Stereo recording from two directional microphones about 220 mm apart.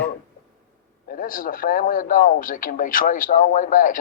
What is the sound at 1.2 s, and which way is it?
Speech, 40° left (ahead or behind).